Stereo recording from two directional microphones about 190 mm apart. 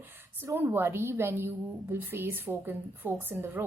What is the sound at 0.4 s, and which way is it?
A woman's voice, 10° right (ahead or behind).